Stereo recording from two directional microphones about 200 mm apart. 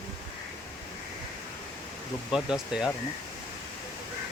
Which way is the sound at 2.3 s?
Centre (ahead or behind).